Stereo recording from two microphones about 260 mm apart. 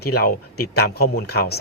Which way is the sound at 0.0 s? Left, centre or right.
Left.